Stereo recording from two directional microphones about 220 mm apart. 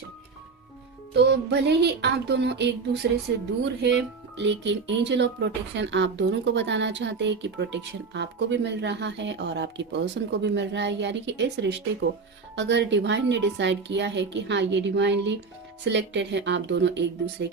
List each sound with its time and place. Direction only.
1.1 s speech: 50° right (ahead or behind)